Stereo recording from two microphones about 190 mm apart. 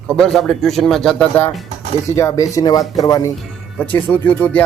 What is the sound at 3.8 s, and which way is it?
Speech, 10° left (ahead or behind).